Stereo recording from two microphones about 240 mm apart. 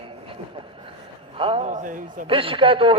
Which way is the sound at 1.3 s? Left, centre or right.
Right.